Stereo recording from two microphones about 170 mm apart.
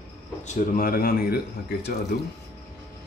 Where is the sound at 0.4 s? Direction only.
50° left (ahead or behind); by 2.0 s 70° left (ahead or behind).